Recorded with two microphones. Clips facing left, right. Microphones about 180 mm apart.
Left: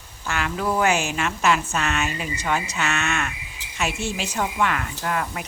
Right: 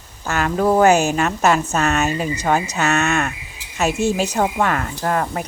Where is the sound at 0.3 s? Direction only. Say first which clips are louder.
Right 7 dB; 40° right (ahead or behind).